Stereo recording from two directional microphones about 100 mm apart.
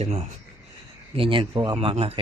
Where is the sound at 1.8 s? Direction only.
70° right (ahead or behind).